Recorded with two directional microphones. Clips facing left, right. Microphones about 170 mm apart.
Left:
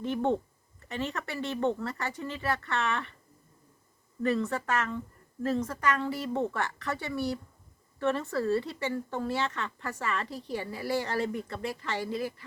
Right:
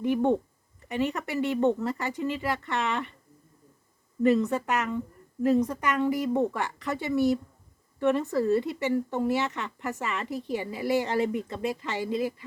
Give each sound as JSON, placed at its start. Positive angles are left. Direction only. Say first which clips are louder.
{"t": 0.0, "sound": "speech", "louder": "right 4 dB", "side_deg": -15}
{"t": 4.2, "sound": "speech", "louder": "right 6 dB", "side_deg": -20}